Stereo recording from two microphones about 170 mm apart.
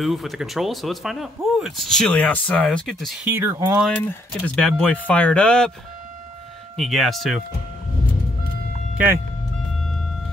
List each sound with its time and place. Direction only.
0.0 s speech: centre (ahead or behind)
3.3 s speech: 15° right (ahead or behind)
3.8 s speech: 10° left (ahead or behind)
6.8 s speech: centre (ahead or behind)
8.9 s speech: 10° right (ahead or behind)